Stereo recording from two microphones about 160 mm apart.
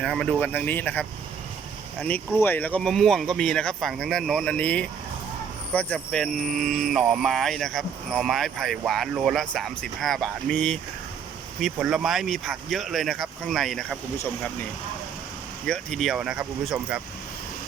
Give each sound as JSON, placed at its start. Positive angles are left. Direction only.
{"t": 0.0, "sound": "speech", "side_deg": 5}
{"t": 15.6, "sound": "speech", "side_deg": 5}